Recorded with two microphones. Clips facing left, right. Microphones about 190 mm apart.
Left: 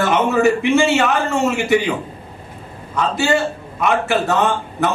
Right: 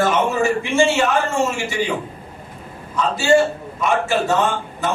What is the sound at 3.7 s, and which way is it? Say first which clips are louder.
Speech: left 2 dB; 60° left (ahead or behind).